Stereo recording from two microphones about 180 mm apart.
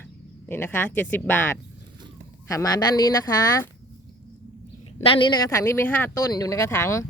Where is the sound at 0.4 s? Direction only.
10° left (ahead or behind).